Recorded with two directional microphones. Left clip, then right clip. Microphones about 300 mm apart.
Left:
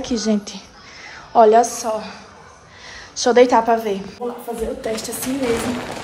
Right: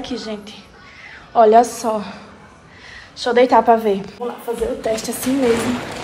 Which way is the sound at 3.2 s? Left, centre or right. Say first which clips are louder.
Even; centre.